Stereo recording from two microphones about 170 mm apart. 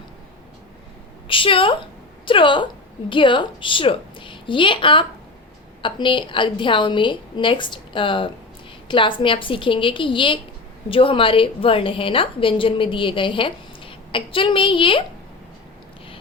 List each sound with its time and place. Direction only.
1.3 s a woman's voice: 30° left (ahead or behind)